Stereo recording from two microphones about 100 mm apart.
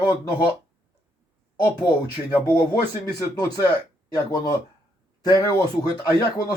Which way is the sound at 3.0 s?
40° left (ahead or behind).